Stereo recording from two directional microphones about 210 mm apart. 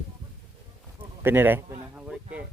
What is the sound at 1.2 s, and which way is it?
Speech, 10° right (ahead or behind).